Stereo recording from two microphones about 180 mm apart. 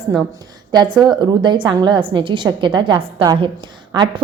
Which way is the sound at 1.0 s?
25° right (ahead or behind).